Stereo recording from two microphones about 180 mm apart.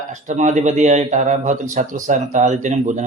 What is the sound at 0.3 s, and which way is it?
Speech, 40° right (ahead or behind).